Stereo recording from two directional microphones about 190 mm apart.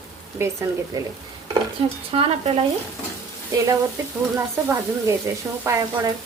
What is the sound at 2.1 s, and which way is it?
Stir, 30° right (ahead or behind).